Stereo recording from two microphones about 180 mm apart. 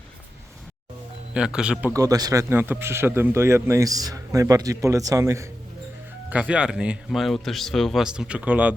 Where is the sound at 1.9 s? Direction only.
20° right (ahead or behind).